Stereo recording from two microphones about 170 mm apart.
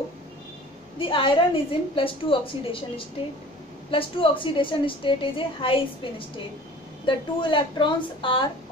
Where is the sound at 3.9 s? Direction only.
30° left (ahead or behind).